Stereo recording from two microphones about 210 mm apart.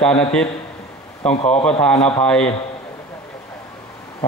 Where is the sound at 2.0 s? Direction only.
25° left (ahead or behind).